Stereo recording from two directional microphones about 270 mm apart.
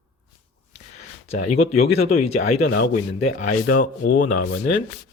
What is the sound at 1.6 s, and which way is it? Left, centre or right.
Speech, left.